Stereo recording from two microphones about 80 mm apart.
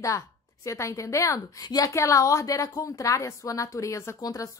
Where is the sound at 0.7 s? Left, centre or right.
Left.